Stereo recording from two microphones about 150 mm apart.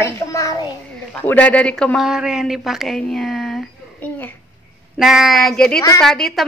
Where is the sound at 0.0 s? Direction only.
20° left (ahead or behind).